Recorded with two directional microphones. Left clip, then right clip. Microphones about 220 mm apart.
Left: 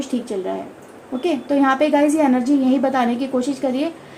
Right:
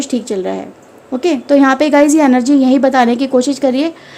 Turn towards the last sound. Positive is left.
turn(degrees=-50)  # may be behind; listen again after turning